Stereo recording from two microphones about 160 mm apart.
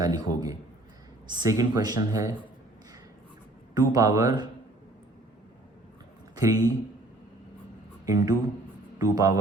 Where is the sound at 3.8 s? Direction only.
25° right (ahead or behind).